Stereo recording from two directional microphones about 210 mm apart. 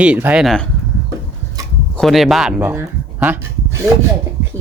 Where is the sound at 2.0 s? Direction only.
Centre (ahead or behind).